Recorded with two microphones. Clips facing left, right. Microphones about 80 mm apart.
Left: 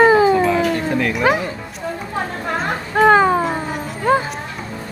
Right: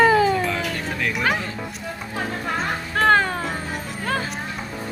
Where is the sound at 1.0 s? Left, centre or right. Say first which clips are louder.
Left 4 dB; centre.